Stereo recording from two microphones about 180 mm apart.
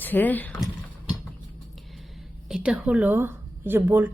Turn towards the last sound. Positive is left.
turn(degrees=-10)  # may be behind; listen again after turning